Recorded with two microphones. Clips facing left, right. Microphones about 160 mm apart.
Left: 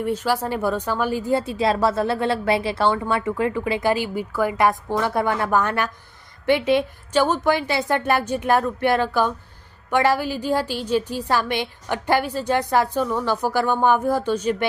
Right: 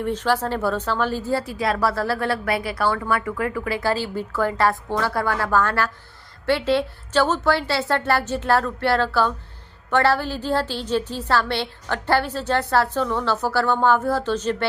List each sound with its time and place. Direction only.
0.0 s a woman's voice: 10° left (ahead or behind)